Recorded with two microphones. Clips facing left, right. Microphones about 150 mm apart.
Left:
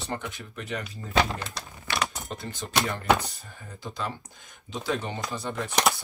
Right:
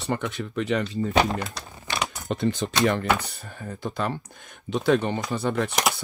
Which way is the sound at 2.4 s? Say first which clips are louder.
Right 7 dB; 90° right.